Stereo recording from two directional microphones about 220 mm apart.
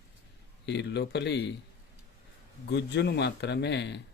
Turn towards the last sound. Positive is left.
turn(degrees=50)  # may be behind; listen again after turning